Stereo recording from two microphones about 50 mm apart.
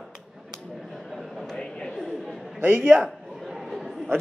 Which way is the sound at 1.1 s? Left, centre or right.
Centre.